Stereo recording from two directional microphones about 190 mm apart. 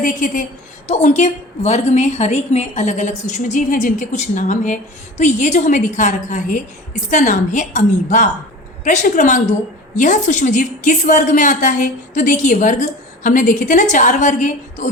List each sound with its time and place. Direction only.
0.0 s a woman's voice: 45° left (ahead or behind)